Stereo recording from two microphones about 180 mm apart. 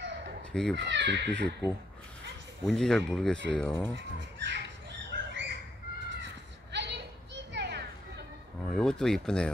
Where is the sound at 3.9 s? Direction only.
85° right.